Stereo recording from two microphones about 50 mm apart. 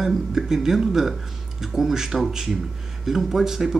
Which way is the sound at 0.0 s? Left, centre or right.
Centre.